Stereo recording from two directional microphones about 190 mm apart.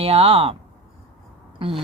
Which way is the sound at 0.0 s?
30° right (ahead or behind).